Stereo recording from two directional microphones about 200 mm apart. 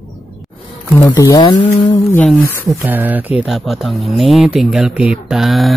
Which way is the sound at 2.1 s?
10° left (ahead or behind).